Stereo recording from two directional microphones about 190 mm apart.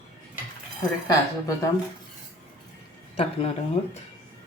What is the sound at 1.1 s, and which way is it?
Speech, 15° left (ahead or behind).